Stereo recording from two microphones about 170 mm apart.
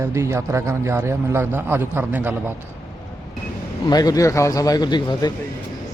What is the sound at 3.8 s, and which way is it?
A man's voice, 20° left (ahead or behind).